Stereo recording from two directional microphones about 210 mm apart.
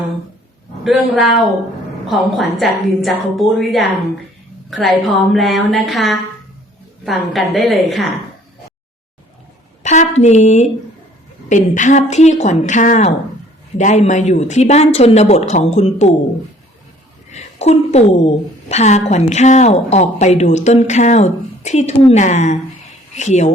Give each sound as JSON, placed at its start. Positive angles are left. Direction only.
{"t": 0.9, "sound": "a woman's voice", "side_deg": 0}
{"t": 5.3, "sound": "a woman's voice", "side_deg": 0}
{"t": 9.8, "sound": "a woman's voice", "side_deg": 35}
{"t": 17.3, "sound": "a woman's voice", "side_deg": 30}